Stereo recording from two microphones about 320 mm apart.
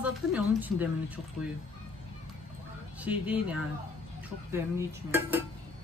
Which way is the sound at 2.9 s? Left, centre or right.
Centre.